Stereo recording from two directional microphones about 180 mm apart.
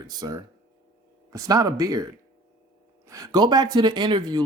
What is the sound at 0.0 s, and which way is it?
Speech, 20° right (ahead or behind).